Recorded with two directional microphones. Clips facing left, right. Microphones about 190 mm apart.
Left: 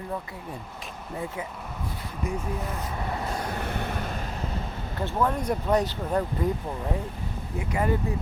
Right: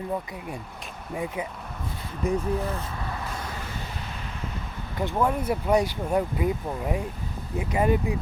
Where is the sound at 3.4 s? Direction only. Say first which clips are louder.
Left 5 dB; 60° left (ahead or behind).